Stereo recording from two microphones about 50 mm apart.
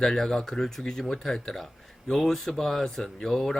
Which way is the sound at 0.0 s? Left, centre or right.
Centre.